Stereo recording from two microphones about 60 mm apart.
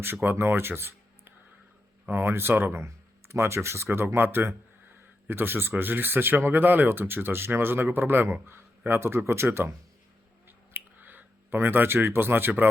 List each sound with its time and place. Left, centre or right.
0.0 s speech: right
2.8 s speech: right
10.8 s a sound: right